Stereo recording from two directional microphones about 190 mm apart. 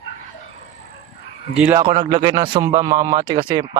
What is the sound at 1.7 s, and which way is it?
Speech, 20° right (ahead or behind).